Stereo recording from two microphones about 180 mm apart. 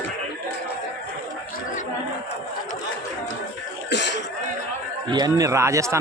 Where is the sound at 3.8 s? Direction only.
75° left (ahead or behind).